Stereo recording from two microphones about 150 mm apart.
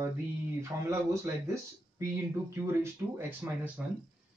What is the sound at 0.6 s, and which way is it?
Speech, 20° right (ahead or behind).